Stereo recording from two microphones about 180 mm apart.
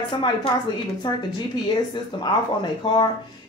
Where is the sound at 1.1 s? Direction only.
25° left (ahead or behind).